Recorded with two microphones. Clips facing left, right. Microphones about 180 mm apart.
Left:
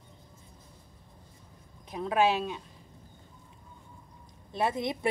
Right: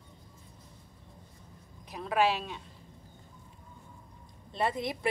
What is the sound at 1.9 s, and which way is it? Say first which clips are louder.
Speech: left 2 dB; 20° left (ahead or behind).